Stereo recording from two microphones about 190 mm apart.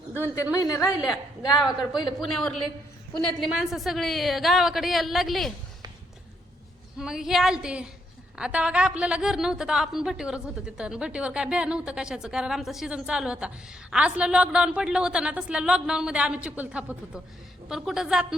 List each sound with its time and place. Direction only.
0.1 s a woman's voice: 10° left (ahead or behind)
2.2 s a woman's voice: centre (ahead or behind)
7.0 s a woman's voice: 5° right (ahead or behind)